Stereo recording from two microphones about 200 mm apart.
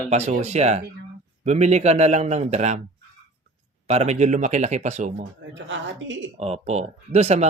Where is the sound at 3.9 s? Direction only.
35° right (ahead or behind).